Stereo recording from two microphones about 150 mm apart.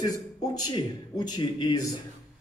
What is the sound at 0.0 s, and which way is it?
A man's voice, 25° left (ahead or behind).